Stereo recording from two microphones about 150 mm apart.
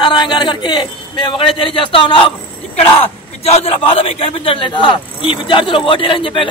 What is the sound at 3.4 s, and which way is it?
Speech, 40° left (ahead or behind).